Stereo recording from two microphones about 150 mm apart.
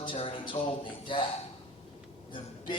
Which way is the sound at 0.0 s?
35° left (ahead or behind).